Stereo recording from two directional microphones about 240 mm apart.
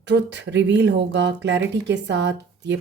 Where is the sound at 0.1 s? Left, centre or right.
Right.